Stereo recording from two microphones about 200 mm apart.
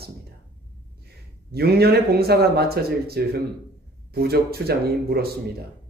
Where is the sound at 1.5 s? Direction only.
50° right (ahead or behind).